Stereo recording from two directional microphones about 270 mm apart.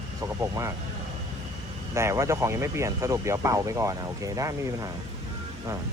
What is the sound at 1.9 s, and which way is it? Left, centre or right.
Speech, centre.